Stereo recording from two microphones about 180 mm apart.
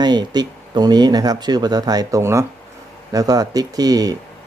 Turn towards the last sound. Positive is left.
turn(degrees=-20)  # may be behind; listen again after turning